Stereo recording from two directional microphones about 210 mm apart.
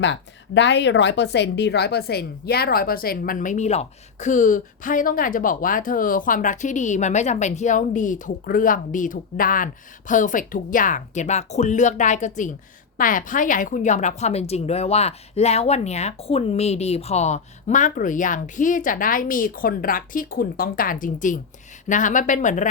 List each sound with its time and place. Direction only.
0.0 s a woman's voice: 60° left (ahead or behind); by 22.6 s 35° left (ahead or behind)